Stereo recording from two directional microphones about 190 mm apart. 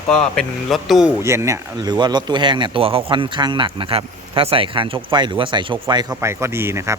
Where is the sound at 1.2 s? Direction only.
15° right (ahead or behind).